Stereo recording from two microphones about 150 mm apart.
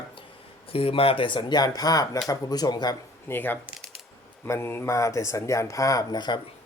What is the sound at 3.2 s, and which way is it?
Speech, 15° left (ahead or behind).